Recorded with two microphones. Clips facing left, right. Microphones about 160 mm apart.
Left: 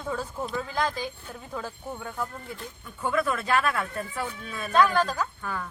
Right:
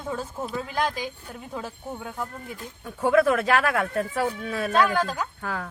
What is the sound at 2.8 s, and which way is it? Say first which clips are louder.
A man's voice: right 7 dB; 85° right.